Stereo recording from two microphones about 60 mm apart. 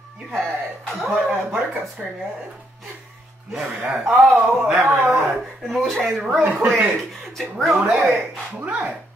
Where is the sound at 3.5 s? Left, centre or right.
Right.